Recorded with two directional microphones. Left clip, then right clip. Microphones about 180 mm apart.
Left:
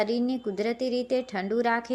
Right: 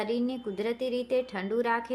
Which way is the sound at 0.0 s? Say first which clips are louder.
Left 4 dB; 25° left (ahead or behind).